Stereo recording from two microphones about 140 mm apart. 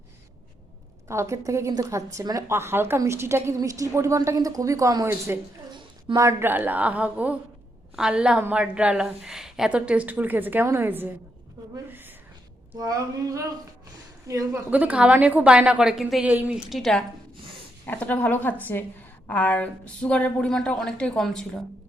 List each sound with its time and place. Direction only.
1.0 s a woman's voice: 20° right (ahead or behind)
5.7 s a sound: 35° right (ahead or behind)
6.2 s a woman's voice: 15° right (ahead or behind)
14.7 s a woman's voice: 10° right (ahead or behind)
17.8 s a woman's voice: 10° left (ahead or behind)